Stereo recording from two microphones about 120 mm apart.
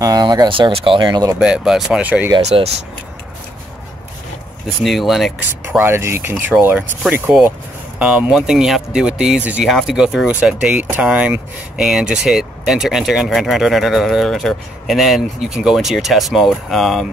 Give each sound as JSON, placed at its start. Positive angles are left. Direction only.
{"t": 0.0, "sound": "speech", "side_deg": -35}
{"t": 1.4, "sound": "speech", "side_deg": -5}
{"t": 2.3, "sound": "speech", "side_deg": -50}
{"t": 4.8, "sound": "speech", "side_deg": 0}
{"t": 5.7, "sound": "speech", "side_deg": -20}